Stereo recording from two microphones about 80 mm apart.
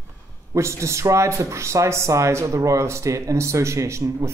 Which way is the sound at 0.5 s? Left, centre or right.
Right.